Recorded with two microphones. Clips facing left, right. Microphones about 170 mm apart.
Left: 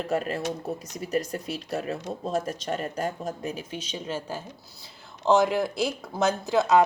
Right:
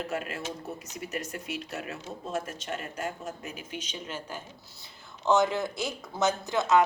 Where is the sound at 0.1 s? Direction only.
35° left (ahead or behind).